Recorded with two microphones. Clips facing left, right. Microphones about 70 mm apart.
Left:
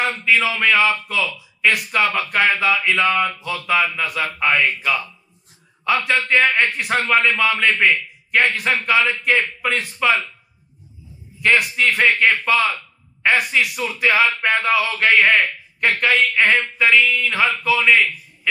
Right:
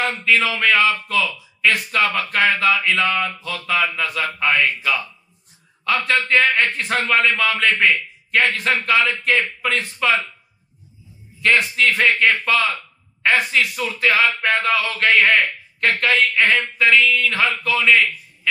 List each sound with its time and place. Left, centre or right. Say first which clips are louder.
0.0 s a man's voice: even; centre
2.0 s a man's voice: left 1 dB; centre
4.6 s a man's voice: even; centre
6.4 s a man's voice: left 1 dB; centre
11.4 s a man's voice: even; centre
12.0 s a man's voice: left 2 dB; centre
16.5 s a man's voice: even; centre